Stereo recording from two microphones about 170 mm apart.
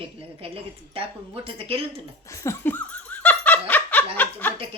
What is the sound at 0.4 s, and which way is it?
Speech, 35° right (ahead or behind).